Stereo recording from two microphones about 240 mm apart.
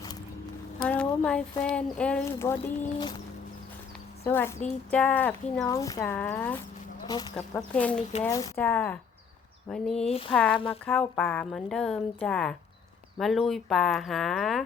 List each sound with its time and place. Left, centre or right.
0.8 s speech: centre
4.3 s speech: centre
10.1 s speech: left
10.3 s speech: centre